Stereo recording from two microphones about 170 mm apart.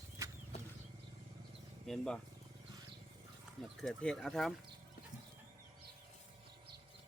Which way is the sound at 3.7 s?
Centre (ahead or behind).